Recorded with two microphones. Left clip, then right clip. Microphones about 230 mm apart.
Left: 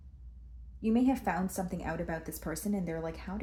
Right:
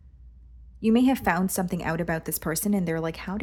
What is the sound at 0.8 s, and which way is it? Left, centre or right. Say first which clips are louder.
Speech: right 7 dB; right.